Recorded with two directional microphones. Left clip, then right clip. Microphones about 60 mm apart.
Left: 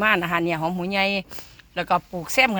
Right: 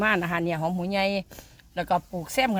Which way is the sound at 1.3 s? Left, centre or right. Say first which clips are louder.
Left 5 dB; centre.